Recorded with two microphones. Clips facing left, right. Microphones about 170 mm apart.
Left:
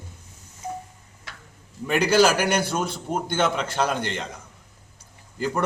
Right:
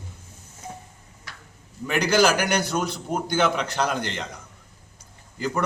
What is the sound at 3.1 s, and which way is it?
Speech, 5° left (ahead or behind).